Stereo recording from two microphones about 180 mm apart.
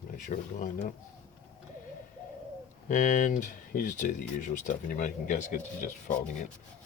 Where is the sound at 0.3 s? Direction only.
45° left (ahead or behind).